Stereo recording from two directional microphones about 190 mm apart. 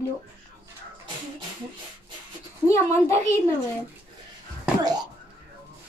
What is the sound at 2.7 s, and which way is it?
Speech, 15° left (ahead or behind).